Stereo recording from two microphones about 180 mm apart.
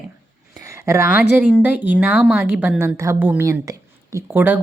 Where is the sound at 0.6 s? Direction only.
15° right (ahead or behind).